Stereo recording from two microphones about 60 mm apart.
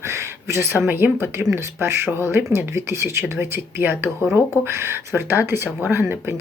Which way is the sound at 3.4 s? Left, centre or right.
Right.